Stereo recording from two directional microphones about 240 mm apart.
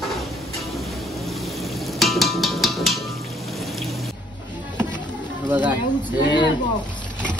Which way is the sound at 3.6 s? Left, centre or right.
Centre.